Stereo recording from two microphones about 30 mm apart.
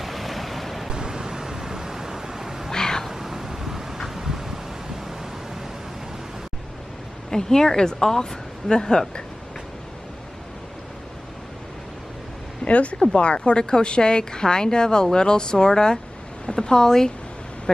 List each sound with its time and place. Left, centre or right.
0.0 s waves: centre
0.8 s vehicle: right
2.7 s a sound: left
3.1 s a sound: centre
5.0 s pink noise: centre
7.2 s a woman's voice: left
12.6 s a woman's voice: left; by 17.1 s centre